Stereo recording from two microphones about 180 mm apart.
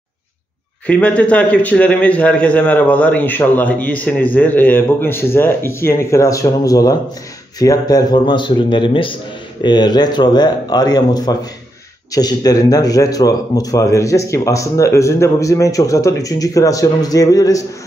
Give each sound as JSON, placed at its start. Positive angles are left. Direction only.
{"t": 0.8, "sound": "a man's voice", "side_deg": 5}